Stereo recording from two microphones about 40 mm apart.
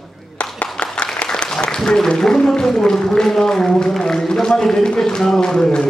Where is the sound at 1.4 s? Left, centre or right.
Left.